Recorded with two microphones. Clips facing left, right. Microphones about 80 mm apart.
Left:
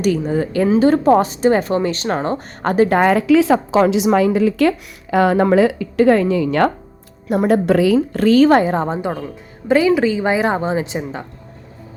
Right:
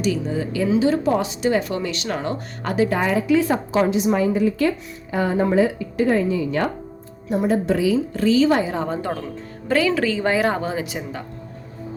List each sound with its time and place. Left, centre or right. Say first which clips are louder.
0.0 s a woman's voice: left 5 dB; left
8.9 s a woman's voice: left 3 dB; centre